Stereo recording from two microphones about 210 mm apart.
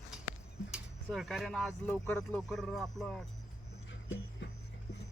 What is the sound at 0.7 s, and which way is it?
Speech, centre (ahead or behind).